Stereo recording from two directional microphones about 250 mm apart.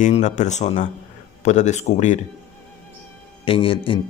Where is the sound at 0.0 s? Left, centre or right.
Left.